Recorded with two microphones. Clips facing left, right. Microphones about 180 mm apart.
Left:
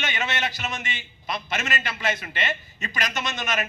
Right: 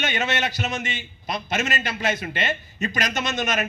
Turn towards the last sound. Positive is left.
turn(degrees=-45)  # may be behind; listen again after turning